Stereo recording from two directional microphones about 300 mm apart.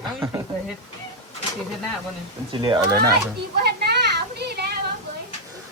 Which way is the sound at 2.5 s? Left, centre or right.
Centre.